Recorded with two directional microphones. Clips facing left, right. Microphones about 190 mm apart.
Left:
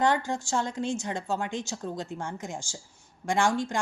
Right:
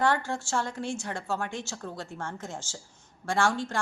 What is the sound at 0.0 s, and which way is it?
A woman's voice, 15° left (ahead or behind).